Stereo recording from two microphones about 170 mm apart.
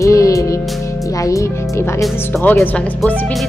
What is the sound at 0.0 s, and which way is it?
Music, 20° left (ahead or behind).